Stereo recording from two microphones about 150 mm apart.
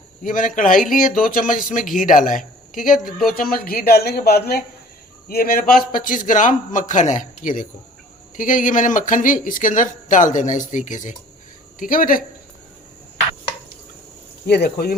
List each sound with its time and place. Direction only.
0.2 s speech: 60° left (ahead or behind)
3.2 s a woman's voice: 75° left (ahead or behind); by 4.6 s 90° left
5.3 s a man's voice: 80° left
5.7 s speech: 65° left (ahead or behind)
14.4 s a woman's voice: 90° left